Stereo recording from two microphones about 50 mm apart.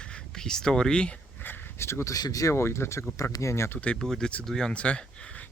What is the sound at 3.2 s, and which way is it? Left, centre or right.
Speech, left.